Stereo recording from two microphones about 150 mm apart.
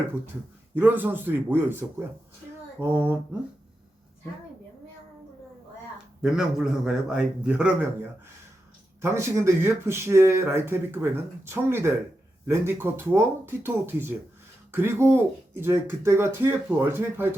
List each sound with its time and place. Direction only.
0.8 s speech: 15° right (ahead or behind)
6.2 s a man's voice: 5° right (ahead or behind)
9.0 s speech: 20° right (ahead or behind)